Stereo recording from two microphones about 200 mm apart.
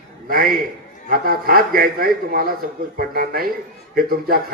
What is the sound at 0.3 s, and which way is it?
A man's voice, 45° right (ahead or behind).